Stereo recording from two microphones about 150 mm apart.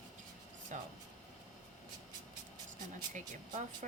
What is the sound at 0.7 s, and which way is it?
Speech, 55° right (ahead or behind).